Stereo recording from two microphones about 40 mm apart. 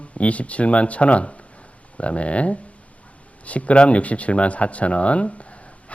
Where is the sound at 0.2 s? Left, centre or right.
Left.